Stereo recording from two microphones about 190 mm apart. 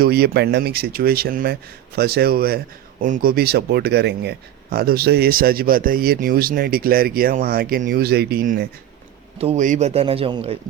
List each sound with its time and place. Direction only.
0.0 s speech: 55° right (ahead or behind)
9.4 s a man's voice: 35° right (ahead or behind)